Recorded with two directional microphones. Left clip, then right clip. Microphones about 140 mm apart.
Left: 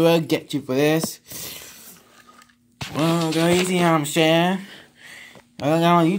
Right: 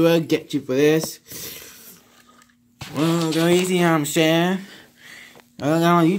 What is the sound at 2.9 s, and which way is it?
Speech, 25° left (ahead or behind).